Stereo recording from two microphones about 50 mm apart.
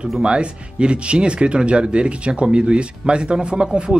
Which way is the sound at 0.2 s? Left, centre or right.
Right.